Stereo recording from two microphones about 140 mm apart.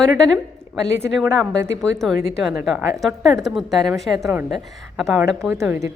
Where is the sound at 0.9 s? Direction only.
15° right (ahead or behind).